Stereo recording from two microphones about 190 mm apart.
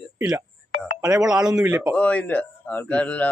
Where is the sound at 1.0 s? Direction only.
20° right (ahead or behind).